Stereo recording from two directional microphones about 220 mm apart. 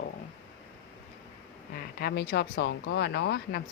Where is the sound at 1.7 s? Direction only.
45° left (ahead or behind).